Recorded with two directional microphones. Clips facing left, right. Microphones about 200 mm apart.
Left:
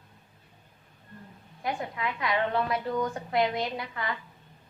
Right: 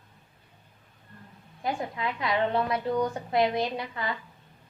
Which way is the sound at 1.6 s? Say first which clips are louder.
Right 1 dB; 25° right (ahead or behind).